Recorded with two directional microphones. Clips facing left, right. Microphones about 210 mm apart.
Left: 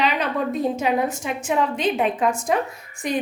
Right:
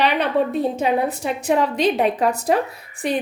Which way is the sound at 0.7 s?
35° right (ahead or behind).